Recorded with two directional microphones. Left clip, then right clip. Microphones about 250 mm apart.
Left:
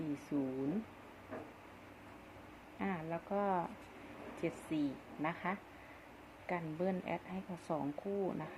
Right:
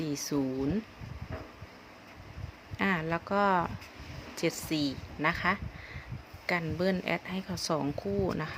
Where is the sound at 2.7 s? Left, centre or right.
Right.